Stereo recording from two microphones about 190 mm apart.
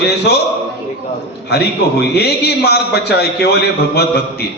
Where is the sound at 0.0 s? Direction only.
55° left (ahead or behind).